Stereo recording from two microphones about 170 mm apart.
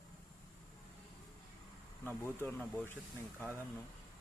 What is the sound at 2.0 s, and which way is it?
Speech, 10° left (ahead or behind).